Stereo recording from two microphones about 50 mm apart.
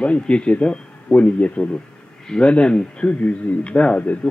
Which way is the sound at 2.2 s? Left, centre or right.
Centre.